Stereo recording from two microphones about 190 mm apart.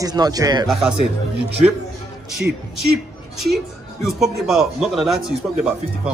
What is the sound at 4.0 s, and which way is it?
Speech, centre (ahead or behind).